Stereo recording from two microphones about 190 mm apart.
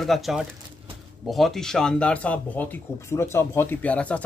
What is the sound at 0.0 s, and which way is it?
Speech, centre (ahead or behind).